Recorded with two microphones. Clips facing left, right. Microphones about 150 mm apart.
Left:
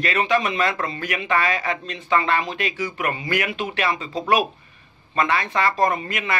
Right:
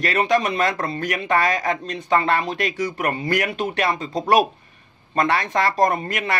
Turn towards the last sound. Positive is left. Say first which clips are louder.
# right 2 dB
turn(degrees=-40)  # may be behind; listen again after turning